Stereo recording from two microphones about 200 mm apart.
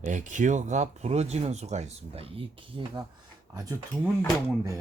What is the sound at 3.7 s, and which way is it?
Speech, 15° right (ahead or behind).